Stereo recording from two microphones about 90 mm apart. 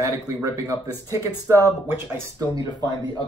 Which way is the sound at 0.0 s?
35° right (ahead or behind).